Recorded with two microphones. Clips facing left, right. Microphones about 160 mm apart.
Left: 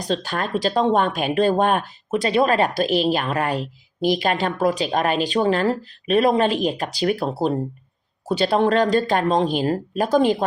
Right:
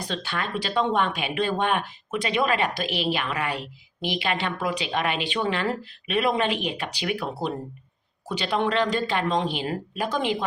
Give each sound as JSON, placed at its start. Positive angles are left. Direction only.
{"t": 0.1, "sound": "speech", "side_deg": 40}